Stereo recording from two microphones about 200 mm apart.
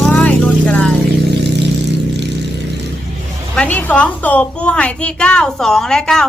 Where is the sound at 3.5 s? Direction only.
5° left (ahead or behind).